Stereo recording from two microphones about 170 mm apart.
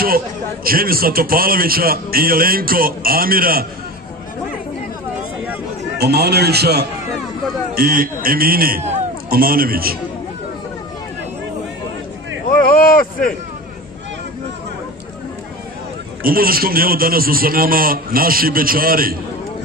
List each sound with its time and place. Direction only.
0.7 s a man's voice: 60° right (ahead or behind)
5.9 s a man's voice: 70° right (ahead or behind)
7.7 s a man's voice: 60° right (ahead or behind)
12.4 s a sound: 55° left (ahead or behind)
16.2 s a man's voice: 60° right (ahead or behind)